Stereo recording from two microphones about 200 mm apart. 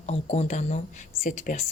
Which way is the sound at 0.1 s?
35° left (ahead or behind).